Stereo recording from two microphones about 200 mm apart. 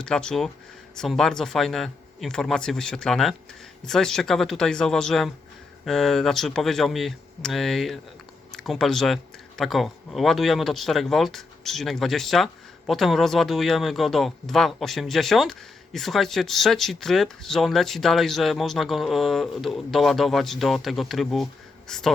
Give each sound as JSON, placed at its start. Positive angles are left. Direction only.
{"t": 0.0, "sound": "speech", "side_deg": 5}